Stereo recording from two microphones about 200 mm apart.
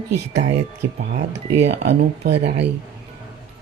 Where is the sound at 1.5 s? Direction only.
35° right (ahead or behind).